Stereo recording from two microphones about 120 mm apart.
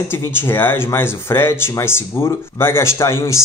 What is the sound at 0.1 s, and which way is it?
Speech, 20° left (ahead or behind).